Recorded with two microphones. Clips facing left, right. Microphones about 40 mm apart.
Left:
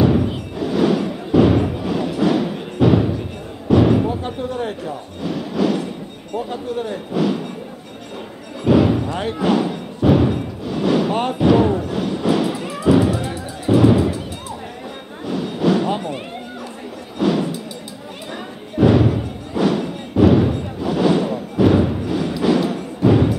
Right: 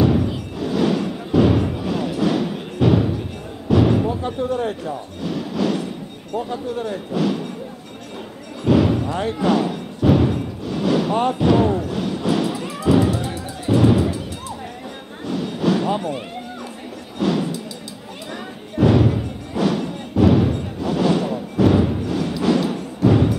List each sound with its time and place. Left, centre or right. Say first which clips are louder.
0.0 s music: left 2 dB; centre
0.6 s thump: left 2 dB; centre
3.6 s music: left 2 dB; centre
4.1 s a sound: right 2 dB; left
4.8 s music: left 1 dB; centre
6.8 s speech: left 2 dB; centre
8.6 s thump: left 2 dB; centre
9.4 s music: left 1 dB; centre
11.3 s thump: left 2 dB; centre
13.7 s music: left 2 dB; centre
15.2 s a sound: left 2 dB; centre
17.2 s a sound: left 2 dB; centre
18.8 s music: left 2 dB; centre